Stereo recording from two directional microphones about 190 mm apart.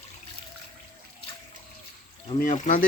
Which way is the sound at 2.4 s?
40° left (ahead or behind).